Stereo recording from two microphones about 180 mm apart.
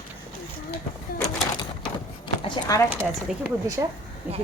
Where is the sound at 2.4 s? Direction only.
25° left (ahead or behind).